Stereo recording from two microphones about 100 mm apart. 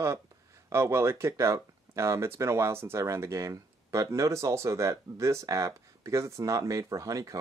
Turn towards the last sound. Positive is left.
turn(degrees=-35)  # may be behind; listen again after turning